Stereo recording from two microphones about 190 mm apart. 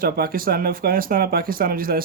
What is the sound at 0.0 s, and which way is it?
Speech, 50° right (ahead or behind).